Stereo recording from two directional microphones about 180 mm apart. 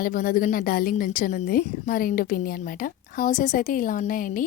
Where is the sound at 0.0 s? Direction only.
50° left (ahead or behind).